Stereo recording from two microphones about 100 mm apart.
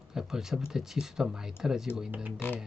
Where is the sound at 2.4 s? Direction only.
20° left (ahead or behind).